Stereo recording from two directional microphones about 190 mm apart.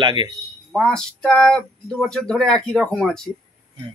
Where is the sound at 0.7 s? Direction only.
5° left (ahead or behind).